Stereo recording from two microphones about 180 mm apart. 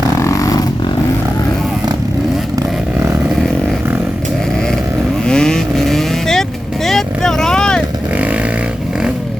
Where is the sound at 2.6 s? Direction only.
Centre (ahead or behind).